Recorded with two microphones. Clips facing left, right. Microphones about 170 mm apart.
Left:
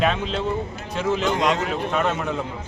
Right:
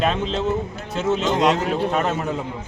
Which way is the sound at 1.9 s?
40° right (ahead or behind).